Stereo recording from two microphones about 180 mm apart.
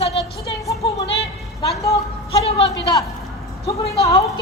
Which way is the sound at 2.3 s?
35° left (ahead or behind).